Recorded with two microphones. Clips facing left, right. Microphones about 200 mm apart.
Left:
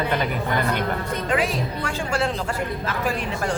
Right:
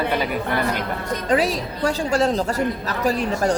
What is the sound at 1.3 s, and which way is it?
A woman's voice, 40° right (ahead or behind).